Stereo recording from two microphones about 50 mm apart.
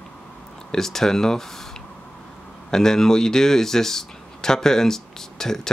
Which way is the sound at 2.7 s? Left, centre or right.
Centre.